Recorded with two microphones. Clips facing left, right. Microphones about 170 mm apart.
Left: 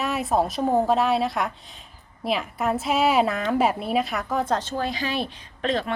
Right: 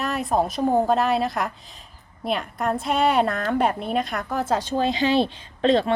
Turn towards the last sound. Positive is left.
turn(degrees=-30)  # may be behind; listen again after turning